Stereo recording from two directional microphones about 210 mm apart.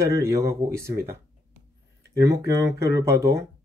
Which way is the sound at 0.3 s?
15° right (ahead or behind).